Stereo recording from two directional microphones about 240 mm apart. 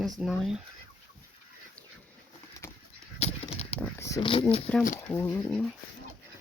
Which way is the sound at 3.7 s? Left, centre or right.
Centre.